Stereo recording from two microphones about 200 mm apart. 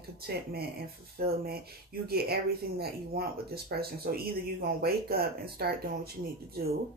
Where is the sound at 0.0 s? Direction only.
50° right (ahead or behind).